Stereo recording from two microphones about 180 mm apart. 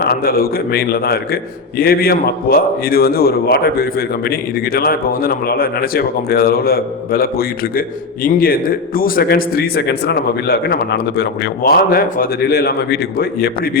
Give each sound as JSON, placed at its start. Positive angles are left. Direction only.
{"t": 0.0, "sound": "a man's voice", "side_deg": 55}